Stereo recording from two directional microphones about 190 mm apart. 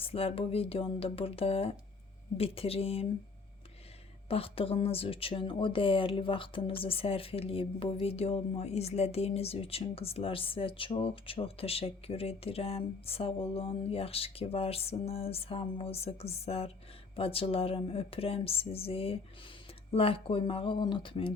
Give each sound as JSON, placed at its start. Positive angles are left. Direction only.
{"t": 0.0, "sound": "speech", "side_deg": 30}
{"t": 4.3, "sound": "speech", "side_deg": 30}